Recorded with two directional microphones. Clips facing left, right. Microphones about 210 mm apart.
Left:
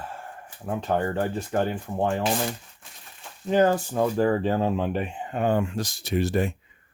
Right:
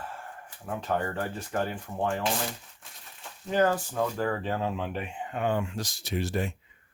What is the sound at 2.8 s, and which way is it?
Speech, centre (ahead or behind).